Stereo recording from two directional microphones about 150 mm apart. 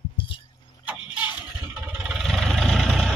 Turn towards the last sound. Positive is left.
turn(degrees=0)  # may be behind; listen again after turning